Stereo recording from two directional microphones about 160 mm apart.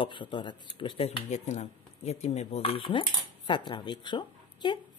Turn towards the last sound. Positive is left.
turn(degrees=30)  # may be behind; listen again after turning